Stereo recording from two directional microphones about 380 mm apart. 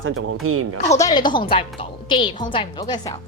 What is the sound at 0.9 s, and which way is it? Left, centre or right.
A woman's voice, centre.